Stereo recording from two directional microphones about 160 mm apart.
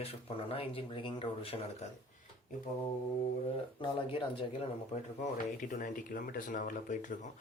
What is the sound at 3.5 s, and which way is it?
Speech, 35° left (ahead or behind).